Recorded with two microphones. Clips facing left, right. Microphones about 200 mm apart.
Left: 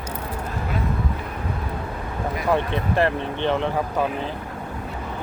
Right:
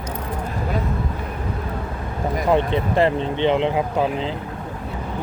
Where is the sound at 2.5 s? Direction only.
15° right (ahead or behind).